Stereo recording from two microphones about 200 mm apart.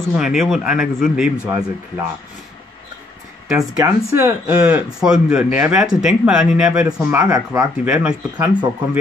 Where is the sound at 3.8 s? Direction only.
15° right (ahead or behind).